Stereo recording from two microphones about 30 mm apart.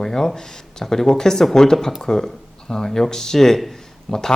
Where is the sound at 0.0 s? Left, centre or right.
Centre.